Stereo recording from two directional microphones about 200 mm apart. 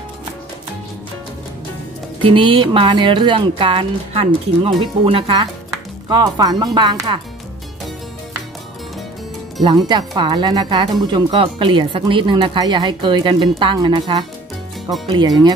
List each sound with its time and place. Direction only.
2.2 s speech: 25° right (ahead or behind)
9.8 s speech: 20° right (ahead or behind)